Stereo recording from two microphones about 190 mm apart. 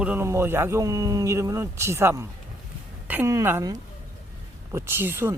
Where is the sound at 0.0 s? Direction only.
10° right (ahead or behind).